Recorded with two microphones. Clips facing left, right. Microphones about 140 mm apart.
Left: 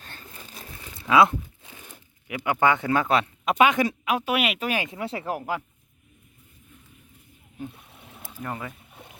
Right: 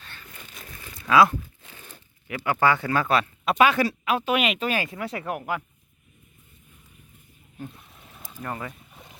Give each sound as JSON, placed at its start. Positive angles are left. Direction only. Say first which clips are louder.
{"t": 0.0, "sound": "a sound", "louder": "left 2 dB", "side_deg": 40}
{"t": 0.3, "sound": "crumpling", "louder": "left 1 dB", "side_deg": 30}
{"t": 3.5, "sound": "speech", "louder": "even", "side_deg": 15}
{"t": 8.3, "sound": "boat", "louder": "even", "side_deg": 10}